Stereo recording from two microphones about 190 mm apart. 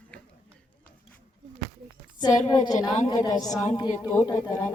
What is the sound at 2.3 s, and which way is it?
A woman's voice, 40° left (ahead or behind).